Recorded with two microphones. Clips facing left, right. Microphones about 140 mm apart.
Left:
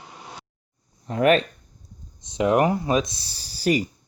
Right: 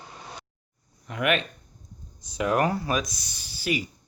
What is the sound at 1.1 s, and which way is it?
Speech, 35° left (ahead or behind).